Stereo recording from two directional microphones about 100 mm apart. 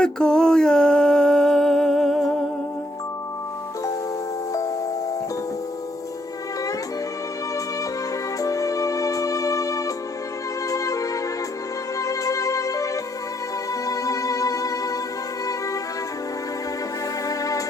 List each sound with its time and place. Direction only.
0.0 s a sound: 10° left (ahead or behind)
8.4 s music: 35° left (ahead or behind)
17.2 s music: 35° left (ahead or behind)